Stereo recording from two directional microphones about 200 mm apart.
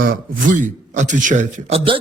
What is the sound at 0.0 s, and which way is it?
Speech, 45° right (ahead or behind).